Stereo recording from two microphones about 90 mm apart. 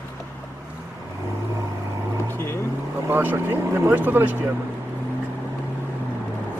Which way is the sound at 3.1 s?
20° right (ahead or behind).